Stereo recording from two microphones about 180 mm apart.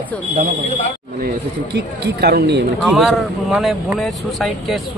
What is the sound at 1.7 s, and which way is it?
Speech, 65° right (ahead or behind).